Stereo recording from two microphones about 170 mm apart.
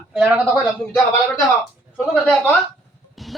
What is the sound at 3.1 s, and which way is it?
Music, centre (ahead or behind).